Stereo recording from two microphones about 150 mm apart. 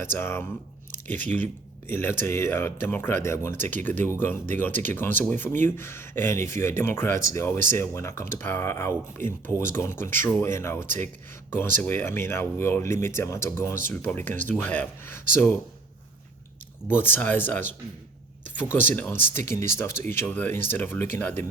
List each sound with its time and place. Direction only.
0.0 s speech: 15° left (ahead or behind)
1.9 s speech: 15° left (ahead or behind)
17.0 s speech: 15° left (ahead or behind)